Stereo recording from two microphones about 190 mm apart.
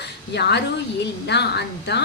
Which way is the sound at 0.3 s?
65° left (ahead or behind).